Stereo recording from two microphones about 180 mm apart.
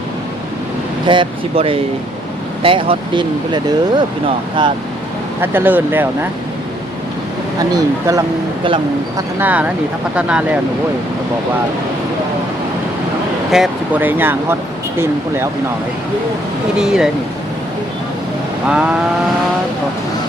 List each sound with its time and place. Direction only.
1.0 s speech: 25° right (ahead or behind)
5.4 s speech: 10° right (ahead or behind)
7.7 s speech: 20° right (ahead or behind)
9.4 s speech: 10° right (ahead or behind)
13.5 s speech: 5° right (ahead or behind)
16.7 s speech: 5° right (ahead or behind)
18.7 s speech: 5° right (ahead or behind)